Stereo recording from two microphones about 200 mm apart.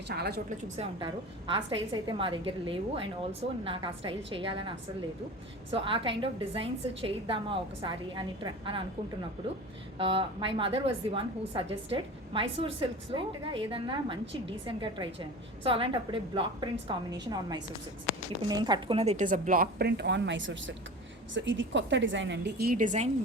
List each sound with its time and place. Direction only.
0.1 s a woman's voice: 55° right (ahead or behind)
0.9 s a woman's voice: 25° right (ahead or behind)
5.7 s a woman's voice: 25° right (ahead or behind)
10.0 s a woman's voice: 25° right (ahead or behind)